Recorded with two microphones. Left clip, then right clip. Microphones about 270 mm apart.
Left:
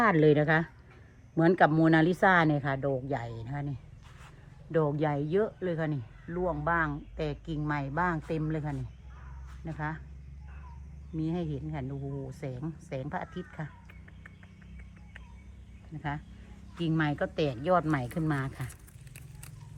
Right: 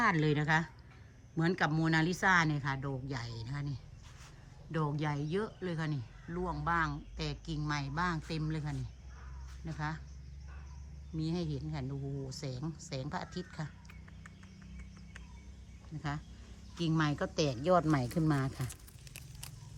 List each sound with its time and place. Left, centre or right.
0.0 s speech: centre
4.7 s speech: centre
11.2 s speech: centre
16.8 s speech: centre